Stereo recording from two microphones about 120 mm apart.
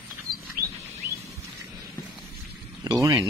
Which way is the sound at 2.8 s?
30° right (ahead or behind).